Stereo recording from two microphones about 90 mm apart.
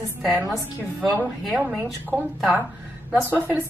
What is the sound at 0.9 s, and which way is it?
Speech, 20° right (ahead or behind).